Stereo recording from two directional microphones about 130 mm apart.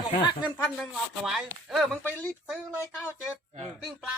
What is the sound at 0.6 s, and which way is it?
Speech, 10° left (ahead or behind).